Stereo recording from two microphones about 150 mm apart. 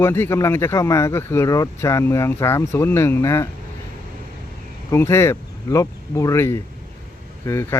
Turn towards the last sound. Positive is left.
turn(degrees=15)  # may be behind; listen again after turning